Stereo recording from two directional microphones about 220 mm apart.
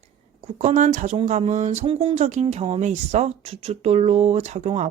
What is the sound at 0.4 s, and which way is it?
Speech, 30° right (ahead or behind).